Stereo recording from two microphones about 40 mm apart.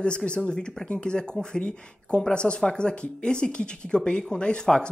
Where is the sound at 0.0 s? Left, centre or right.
Left.